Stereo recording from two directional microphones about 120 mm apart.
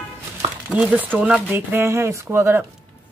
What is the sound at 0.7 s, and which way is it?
Speech, 10° right (ahead or behind).